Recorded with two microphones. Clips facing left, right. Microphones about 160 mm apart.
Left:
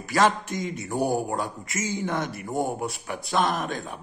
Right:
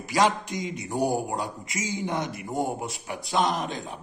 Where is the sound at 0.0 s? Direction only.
15° right (ahead or behind).